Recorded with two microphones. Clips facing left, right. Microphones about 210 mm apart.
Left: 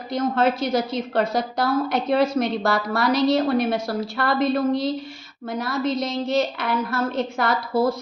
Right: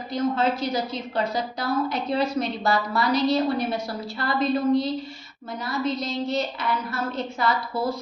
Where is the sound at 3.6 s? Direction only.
50° left (ahead or behind).